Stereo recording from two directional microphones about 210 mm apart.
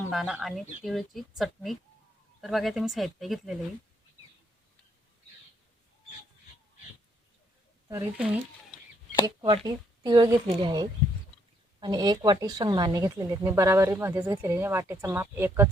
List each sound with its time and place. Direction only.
0.1 s speech: centre (ahead or behind)
7.9 s speech: 10° right (ahead or behind)
9.2 s a woman's voice: 25° right (ahead or behind)